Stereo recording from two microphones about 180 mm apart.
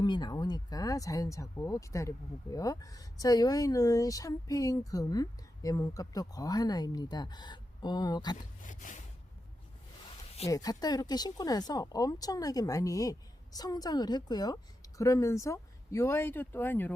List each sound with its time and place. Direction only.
0.0 s speech: 25° left (ahead or behind)
8.4 s speech: 45° left (ahead or behind)
10.5 s speech: 20° left (ahead or behind)